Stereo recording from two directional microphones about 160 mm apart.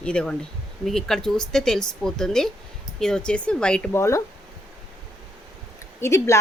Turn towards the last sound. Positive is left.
turn(degrees=20)  # may be behind; listen again after turning